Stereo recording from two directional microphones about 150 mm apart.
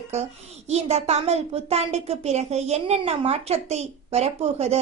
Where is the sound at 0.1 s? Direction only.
45° right (ahead or behind).